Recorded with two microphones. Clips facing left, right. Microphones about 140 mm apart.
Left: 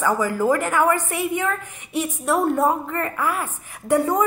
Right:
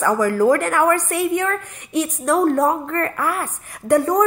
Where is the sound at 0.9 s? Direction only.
65° right (ahead or behind).